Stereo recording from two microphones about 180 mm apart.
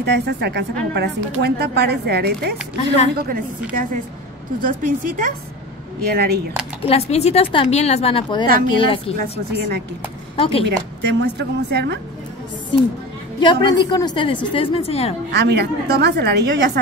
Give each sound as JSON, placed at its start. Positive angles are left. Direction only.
{"t": 0.0, "sound": "a woman's voice", "side_deg": -70}
{"t": 3.2, "sound": "speech", "side_deg": -50}
{"t": 4.6, "sound": "speech", "side_deg": -50}
{"t": 6.0, "sound": "a woman's voice", "side_deg": -60}
{"t": 6.8, "sound": "a woman's voice", "side_deg": 35}
{"t": 9.1, "sound": "a woman's voice", "side_deg": -60}
{"t": 10.3, "sound": "speech", "side_deg": 30}
{"t": 11.0, "sound": "a woman's voice", "side_deg": -80}
{"t": 12.7, "sound": "a woman's voice", "side_deg": 25}
{"t": 15.3, "sound": "a woman's voice", "side_deg": -70}